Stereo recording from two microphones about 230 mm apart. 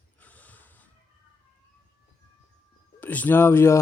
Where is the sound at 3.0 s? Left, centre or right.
Centre.